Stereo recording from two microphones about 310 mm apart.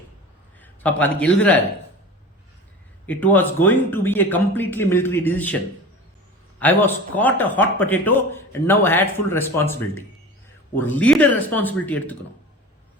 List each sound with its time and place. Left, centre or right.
0.6 s a man's voice: centre
3.1 s speech: centre
6.6 s speech: centre
10.8 s speech: centre